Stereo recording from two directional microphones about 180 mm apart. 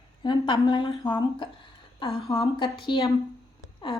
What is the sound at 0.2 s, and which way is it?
A woman's voice, 25° left (ahead or behind).